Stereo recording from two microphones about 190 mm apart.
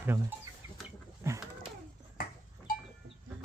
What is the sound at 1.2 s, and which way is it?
Speech, 15° right (ahead or behind).